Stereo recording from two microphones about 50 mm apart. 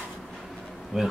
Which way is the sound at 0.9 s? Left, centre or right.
Centre.